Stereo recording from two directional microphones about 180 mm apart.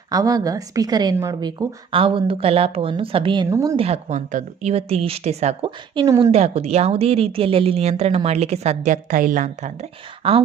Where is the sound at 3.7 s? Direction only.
35° right (ahead or behind).